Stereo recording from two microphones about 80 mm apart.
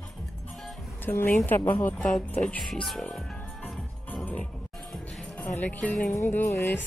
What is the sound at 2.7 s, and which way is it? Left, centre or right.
Speech, centre.